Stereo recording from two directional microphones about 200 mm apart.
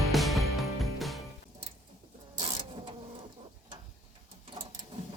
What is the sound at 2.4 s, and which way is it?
Printer, 30° right (ahead or behind).